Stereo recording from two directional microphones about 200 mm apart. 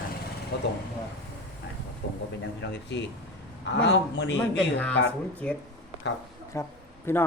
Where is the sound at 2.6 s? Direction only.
60° left (ahead or behind).